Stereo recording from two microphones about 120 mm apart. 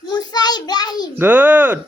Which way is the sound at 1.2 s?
15° right (ahead or behind).